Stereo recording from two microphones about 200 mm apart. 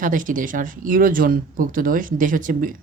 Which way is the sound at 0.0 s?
40° right (ahead or behind).